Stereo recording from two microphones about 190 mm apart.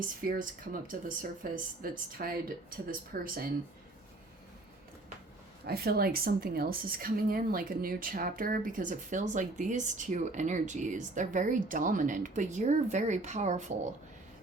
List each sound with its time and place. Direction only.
0.3 s a woman's voice: 45° right (ahead or behind)
5.6 s a woman's voice: 55° right (ahead or behind); by 13.7 s 40° right (ahead or behind)